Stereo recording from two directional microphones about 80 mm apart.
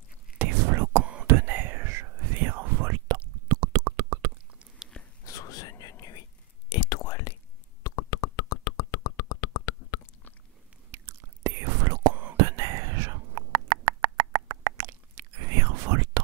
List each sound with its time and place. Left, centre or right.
0.4 s whispering: right
3.4 s a sound: right
5.2 s whispering: left
7.8 s beatboxing: left
10.9 s whispering: right
12.4 s a sound: right